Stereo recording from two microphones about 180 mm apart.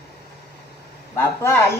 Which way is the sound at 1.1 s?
15° left (ahead or behind).